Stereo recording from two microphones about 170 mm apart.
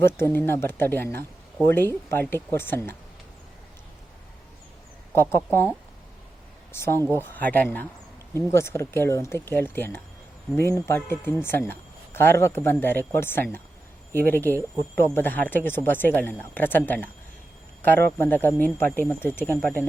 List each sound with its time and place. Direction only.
0.0 s speech: 15° left (ahead or behind)
5.1 s speech: 15° left (ahead or behind)
6.7 s speech: 15° left (ahead or behind)
18.2 s speech: 10° left (ahead or behind)